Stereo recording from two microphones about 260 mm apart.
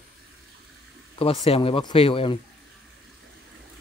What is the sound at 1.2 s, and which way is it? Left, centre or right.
Speech, left.